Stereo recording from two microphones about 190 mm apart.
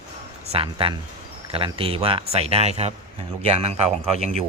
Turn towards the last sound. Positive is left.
turn(degrees=45)  # may be behind; listen again after turning